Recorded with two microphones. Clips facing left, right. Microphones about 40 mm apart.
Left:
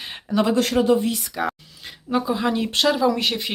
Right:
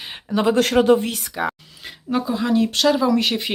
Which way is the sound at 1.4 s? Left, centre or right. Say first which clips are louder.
Right 2 dB; centre.